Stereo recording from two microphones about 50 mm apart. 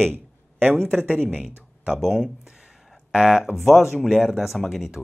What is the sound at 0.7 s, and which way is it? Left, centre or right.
Speech, centre.